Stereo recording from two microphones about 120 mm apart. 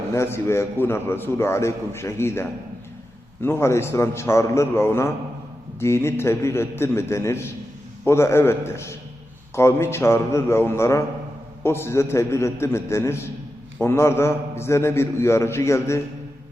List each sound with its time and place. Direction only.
0.1 s a man's voice: 20° left (ahead or behind)